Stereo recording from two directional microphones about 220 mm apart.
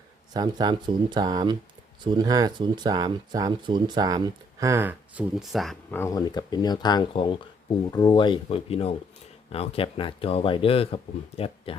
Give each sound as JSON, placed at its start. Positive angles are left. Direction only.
{"t": 0.3, "sound": "speech", "side_deg": -20}
{"t": 6.0, "sound": "speech", "side_deg": 15}